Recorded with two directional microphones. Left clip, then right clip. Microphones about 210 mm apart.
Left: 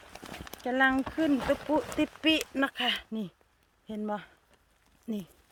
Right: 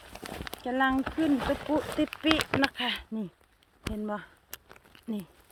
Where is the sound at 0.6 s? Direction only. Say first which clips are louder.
Left 1 dB; 15° left (ahead or behind).